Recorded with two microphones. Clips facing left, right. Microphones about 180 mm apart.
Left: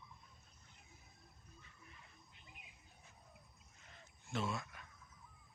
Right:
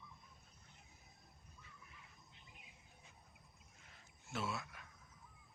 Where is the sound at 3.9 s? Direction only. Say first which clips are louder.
Left 3 dB; 5° right (ahead or behind).